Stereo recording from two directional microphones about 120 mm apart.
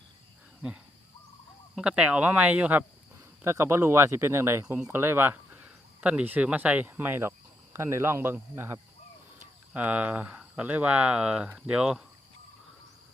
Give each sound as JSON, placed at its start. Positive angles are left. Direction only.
{"t": 1.7, "sound": "speech", "side_deg": -10}